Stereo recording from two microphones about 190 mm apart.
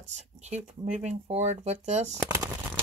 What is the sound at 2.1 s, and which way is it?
Shuffling cards, 15° right (ahead or behind).